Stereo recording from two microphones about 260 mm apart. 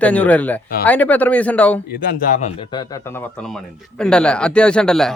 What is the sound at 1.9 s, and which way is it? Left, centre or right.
A man's voice, left.